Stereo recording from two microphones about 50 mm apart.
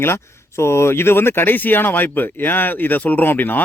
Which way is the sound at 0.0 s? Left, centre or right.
Left.